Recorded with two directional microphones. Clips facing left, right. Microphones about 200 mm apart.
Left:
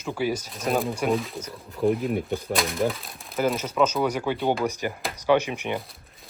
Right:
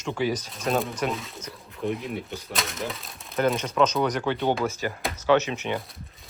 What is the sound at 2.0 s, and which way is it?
Speech, 50° left (ahead or behind).